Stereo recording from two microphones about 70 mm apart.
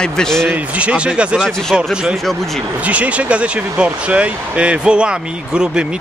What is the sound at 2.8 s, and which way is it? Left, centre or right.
Speech, centre.